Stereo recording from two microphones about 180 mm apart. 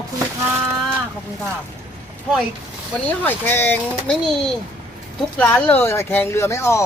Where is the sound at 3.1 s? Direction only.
10° left (ahead or behind).